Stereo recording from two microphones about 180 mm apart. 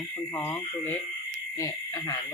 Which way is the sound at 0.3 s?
10° left (ahead or behind).